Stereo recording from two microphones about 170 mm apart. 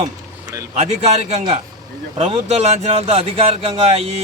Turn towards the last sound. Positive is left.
turn(degrees=-40)  # may be behind; listen again after turning